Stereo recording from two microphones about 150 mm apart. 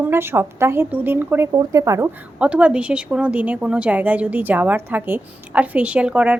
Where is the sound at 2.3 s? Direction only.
10° right (ahead or behind).